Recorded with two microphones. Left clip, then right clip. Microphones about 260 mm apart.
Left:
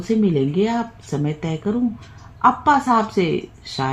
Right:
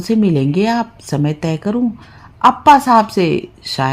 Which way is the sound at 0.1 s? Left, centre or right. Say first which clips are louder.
Right 4 dB; right.